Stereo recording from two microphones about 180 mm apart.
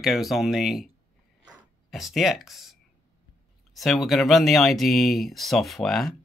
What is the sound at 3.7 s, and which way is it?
Speech, centre (ahead or behind).